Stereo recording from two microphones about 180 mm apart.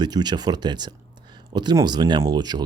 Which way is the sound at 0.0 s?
25° right (ahead or behind).